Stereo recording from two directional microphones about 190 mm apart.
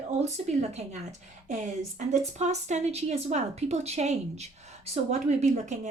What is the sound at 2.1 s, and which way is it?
Speech, 35° right (ahead or behind).